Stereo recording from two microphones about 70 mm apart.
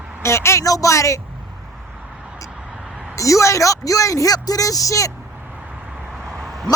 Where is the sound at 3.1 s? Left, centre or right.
Left.